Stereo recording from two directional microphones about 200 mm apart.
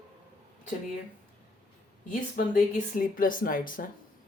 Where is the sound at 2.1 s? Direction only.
45° left (ahead or behind).